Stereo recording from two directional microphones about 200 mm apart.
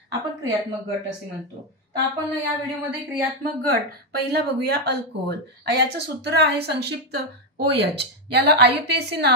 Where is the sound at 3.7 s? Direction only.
50° right (ahead or behind).